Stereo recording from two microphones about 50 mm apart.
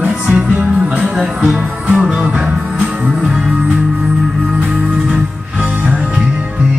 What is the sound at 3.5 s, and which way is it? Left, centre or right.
Music, right.